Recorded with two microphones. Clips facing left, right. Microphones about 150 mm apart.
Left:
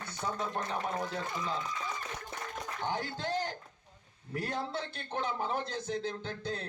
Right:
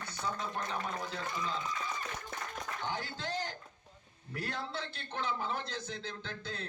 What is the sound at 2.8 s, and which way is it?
A man's voice, 50° left (ahead or behind).